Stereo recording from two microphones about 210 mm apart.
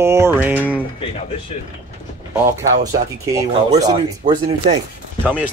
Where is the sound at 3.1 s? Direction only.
15° right (ahead or behind).